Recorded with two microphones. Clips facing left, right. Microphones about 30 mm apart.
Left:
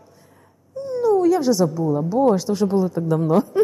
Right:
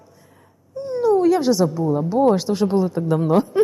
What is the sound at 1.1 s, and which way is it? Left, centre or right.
Speech, right.